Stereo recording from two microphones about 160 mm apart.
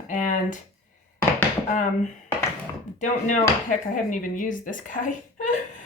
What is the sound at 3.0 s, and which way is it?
Speech, 50° left (ahead or behind).